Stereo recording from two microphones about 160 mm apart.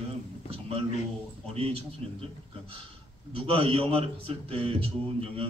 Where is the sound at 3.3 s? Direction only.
35° right (ahead or behind).